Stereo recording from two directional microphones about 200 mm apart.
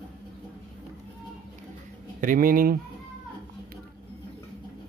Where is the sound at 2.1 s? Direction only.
45° right (ahead or behind).